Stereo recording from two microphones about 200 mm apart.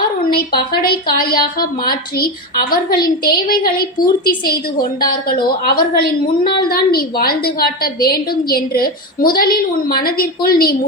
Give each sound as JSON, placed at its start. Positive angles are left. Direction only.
{"t": 0.3, "sound": "a woman's voice", "side_deg": 50}